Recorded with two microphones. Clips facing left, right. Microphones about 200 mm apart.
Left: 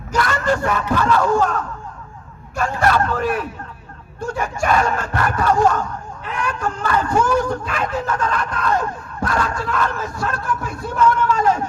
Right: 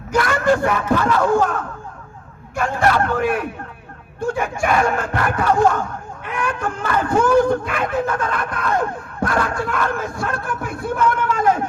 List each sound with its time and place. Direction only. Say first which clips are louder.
0.1 s speech: right 3 dB; 55° right (ahead or behind)